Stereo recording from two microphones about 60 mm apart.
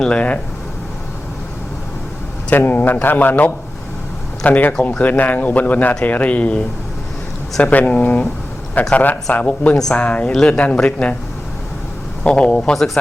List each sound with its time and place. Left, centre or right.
0.0 s speech: centre
2.5 s speech: left
12.2 s speech: centre
12.7 s speech: centre